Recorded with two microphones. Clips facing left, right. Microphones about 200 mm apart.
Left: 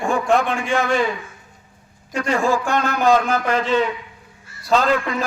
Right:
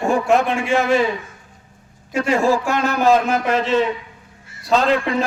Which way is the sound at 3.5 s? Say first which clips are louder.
Right 1 dB; centre (ahead or behind).